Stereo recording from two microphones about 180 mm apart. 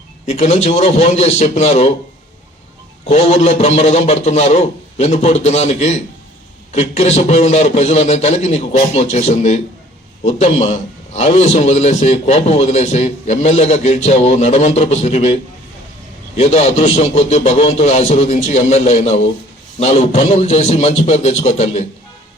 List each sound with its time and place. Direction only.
0.3 s a man's voice: 35° left (ahead or behind)
3.1 s a man's voice: 35° left (ahead or behind)
16.4 s a man's voice: 35° left (ahead or behind)